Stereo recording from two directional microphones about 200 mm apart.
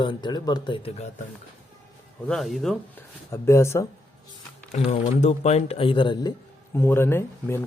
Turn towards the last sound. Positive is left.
turn(degrees=10)  # may be behind; listen again after turning